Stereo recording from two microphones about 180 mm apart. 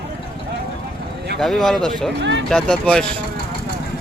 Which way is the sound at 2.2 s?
75° right (ahead or behind).